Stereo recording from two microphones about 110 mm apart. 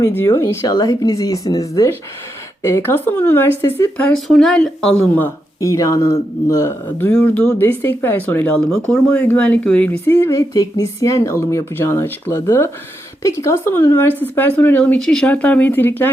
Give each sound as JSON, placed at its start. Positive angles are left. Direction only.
{"t": 0.3, "sound": "speech", "side_deg": 30}
{"t": 4.3, "sound": "speech", "side_deg": 5}
{"t": 5.2, "sound": "speech", "side_deg": 30}
{"t": 10.1, "sound": "speech", "side_deg": 25}
{"t": 14.9, "sound": "speech", "side_deg": 5}